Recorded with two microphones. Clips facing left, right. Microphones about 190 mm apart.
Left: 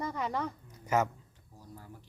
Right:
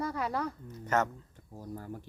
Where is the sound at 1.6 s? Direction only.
50° right (ahead or behind).